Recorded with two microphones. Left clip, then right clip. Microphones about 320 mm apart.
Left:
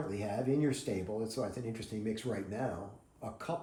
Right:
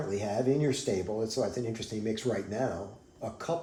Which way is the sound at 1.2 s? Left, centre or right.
Centre.